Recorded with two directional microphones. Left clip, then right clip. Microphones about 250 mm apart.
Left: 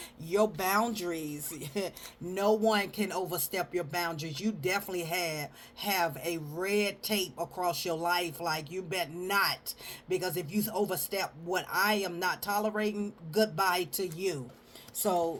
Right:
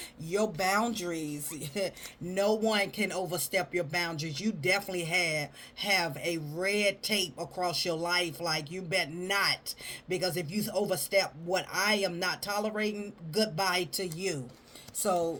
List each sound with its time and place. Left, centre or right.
0.3 s speech: left
2.3 s speech: centre